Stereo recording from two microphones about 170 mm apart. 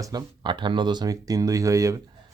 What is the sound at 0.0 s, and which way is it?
Speech, 25° right (ahead or behind).